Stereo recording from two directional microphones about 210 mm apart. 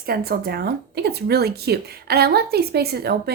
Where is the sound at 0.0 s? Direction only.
45° right (ahead or behind).